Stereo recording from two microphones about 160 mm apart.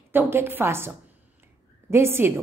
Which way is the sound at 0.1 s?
15° right (ahead or behind).